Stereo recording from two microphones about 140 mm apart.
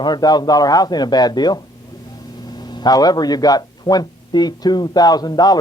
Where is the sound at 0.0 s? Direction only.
30° left (ahead or behind).